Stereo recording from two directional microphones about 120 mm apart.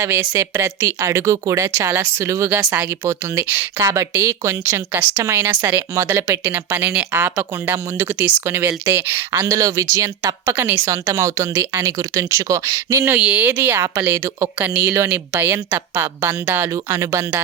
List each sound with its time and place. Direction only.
0.0 s speech: 20° right (ahead or behind)
13.1 s speech: 10° right (ahead or behind)